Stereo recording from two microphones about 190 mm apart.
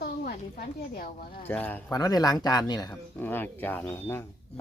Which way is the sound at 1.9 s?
20° left (ahead or behind).